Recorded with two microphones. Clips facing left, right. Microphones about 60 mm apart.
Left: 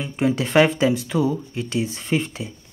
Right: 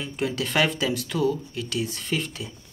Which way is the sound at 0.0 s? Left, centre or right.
Left.